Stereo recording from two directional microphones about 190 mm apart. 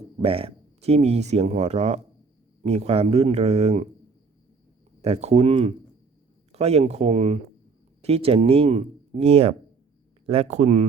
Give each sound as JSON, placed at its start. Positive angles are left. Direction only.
{"t": 0.2, "sound": "speech", "side_deg": -30}
{"t": 5.0, "sound": "speech", "side_deg": -35}